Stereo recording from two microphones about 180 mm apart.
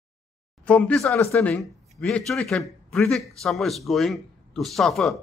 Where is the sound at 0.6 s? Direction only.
5° left (ahead or behind).